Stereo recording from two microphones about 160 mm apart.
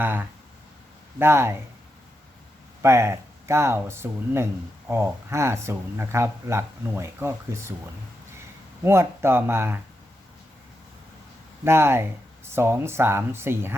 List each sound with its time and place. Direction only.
0.0 s speech: 10° right (ahead or behind)
2.8 s speech: 15° right (ahead or behind)
8.8 s speech: 15° right (ahead or behind)
11.6 s speech: 15° right (ahead or behind)